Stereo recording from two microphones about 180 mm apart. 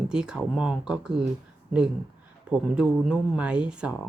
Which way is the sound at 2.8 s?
5° right (ahead or behind).